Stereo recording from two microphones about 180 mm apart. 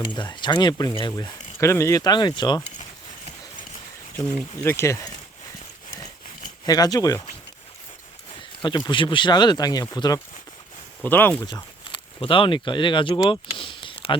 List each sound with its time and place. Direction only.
0.1 s speech: 25° left (ahead or behind)
4.6 s speech: 15° left (ahead or behind)
6.7 s speech: 20° left (ahead or behind)
8.6 s speech: 25° left (ahead or behind)
12.2 s speech: 30° left (ahead or behind)